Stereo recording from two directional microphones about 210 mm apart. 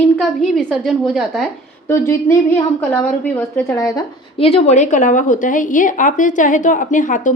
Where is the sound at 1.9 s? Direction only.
15° left (ahead or behind).